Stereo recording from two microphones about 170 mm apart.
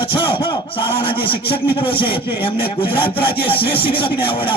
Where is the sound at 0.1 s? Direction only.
30° left (ahead or behind).